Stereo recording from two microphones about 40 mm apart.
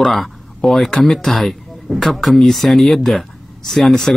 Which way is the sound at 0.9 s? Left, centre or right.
Centre.